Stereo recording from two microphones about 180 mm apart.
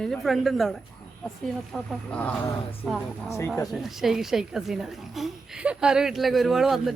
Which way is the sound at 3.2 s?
15° left (ahead or behind).